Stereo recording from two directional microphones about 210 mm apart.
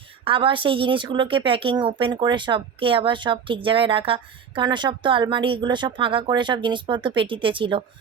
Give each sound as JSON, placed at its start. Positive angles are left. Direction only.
{"t": 0.3, "sound": "speech", "side_deg": -25}